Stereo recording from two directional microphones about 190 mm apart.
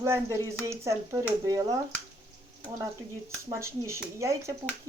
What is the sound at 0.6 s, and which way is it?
Speech, 15° right (ahead or behind).